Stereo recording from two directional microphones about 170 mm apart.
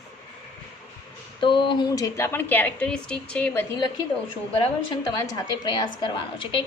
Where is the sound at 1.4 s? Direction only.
30° left (ahead or behind); by 3.6 s 10° left (ahead or behind).